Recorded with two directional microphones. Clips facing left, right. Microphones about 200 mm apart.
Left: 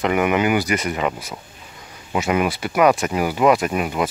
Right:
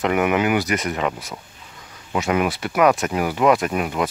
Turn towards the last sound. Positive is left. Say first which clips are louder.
# left 1 dB
turn(degrees=5)  # may be behind; listen again after turning